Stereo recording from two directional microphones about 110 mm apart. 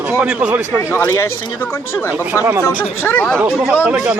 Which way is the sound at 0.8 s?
20° left (ahead or behind).